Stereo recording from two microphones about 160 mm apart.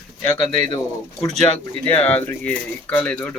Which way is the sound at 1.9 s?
10° left (ahead or behind).